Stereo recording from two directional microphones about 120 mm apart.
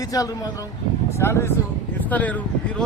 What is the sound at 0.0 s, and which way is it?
A man's voice, 30° left (ahead or behind).